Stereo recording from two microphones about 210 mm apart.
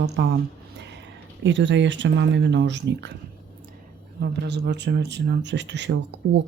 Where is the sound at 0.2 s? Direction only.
55° right (ahead or behind).